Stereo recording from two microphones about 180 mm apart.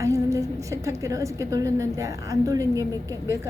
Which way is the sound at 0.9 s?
15° right (ahead or behind).